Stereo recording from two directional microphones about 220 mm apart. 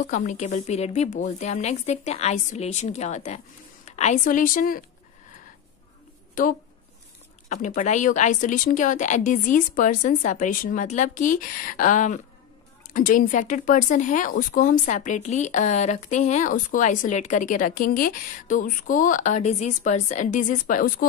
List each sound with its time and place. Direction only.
0.0 s speech: 35° left (ahead or behind)
7.4 s speech: 35° left (ahead or behind)